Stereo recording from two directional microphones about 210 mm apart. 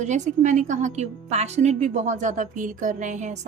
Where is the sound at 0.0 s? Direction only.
35° right (ahead or behind).